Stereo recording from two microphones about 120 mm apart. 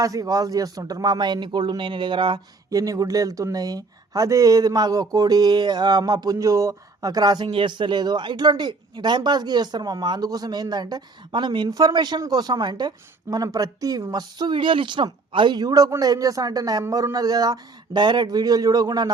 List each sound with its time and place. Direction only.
0.0 s speech: 30° right (ahead or behind)